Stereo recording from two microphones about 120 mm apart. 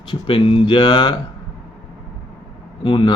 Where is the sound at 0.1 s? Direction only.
45° left (ahead or behind).